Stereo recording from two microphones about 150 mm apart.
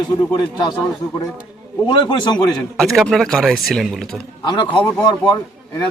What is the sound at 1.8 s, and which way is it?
Speech, 30° left (ahead or behind).